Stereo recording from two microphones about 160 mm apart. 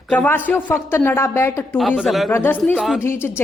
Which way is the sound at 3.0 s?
15° left (ahead or behind).